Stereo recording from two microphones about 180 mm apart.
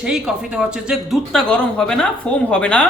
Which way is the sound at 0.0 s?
5° right (ahead or behind).